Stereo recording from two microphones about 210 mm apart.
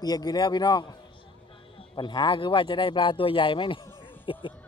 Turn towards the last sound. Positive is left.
turn(degrees=25)  # may be behind; listen again after turning